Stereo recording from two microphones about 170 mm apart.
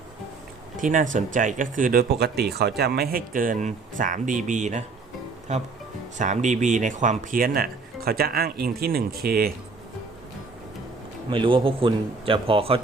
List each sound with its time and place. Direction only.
0.8 s speech: 50° right (ahead or behind)
11.3 s a man's voice: 30° right (ahead or behind)